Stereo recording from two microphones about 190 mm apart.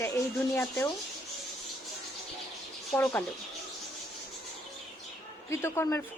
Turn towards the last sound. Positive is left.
turn(degrees=15)  # may be behind; listen again after turning